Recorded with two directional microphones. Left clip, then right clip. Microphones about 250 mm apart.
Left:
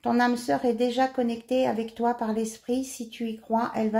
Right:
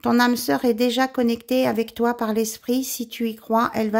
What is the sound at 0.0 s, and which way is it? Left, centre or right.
Speech, right.